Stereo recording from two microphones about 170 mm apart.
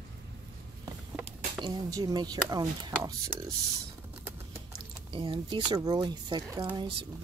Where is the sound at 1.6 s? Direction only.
20° right (ahead or behind).